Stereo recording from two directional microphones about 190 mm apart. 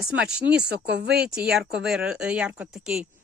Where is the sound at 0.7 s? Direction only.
60° right (ahead or behind).